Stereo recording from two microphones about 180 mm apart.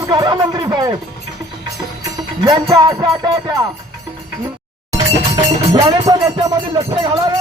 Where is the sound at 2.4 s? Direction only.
25° right (ahead or behind).